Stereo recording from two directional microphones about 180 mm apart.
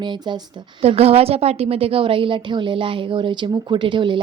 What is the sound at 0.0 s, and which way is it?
Speech, 25° right (ahead or behind).